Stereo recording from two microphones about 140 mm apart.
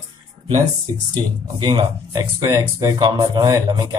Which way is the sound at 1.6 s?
35° right (ahead or behind).